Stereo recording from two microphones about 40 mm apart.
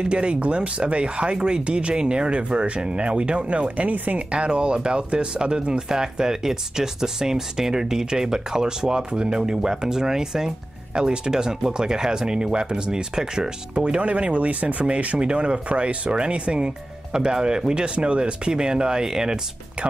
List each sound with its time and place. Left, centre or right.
0.1 s speech: right
4.3 s speech: right
13.7 s speech: right